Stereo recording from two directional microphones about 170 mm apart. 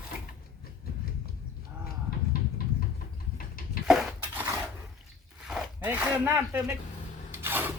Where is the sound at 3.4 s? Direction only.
60° left (ahead or behind).